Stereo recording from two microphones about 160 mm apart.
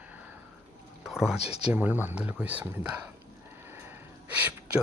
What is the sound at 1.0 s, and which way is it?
Speech, 5° right (ahead or behind).